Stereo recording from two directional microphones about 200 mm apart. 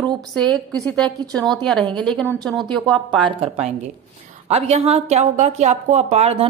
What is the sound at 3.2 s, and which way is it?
A woman's voice, 30° right (ahead or behind).